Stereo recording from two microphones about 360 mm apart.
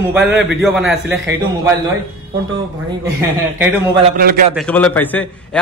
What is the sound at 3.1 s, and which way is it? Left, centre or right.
Speech, centre.